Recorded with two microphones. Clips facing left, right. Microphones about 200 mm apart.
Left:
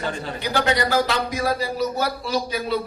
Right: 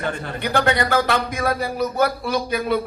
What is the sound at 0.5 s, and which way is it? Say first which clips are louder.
A man's voice: right 1 dB; 55° right (ahead or behind).